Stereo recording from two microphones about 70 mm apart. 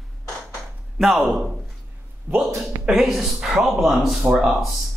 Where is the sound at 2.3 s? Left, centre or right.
Right.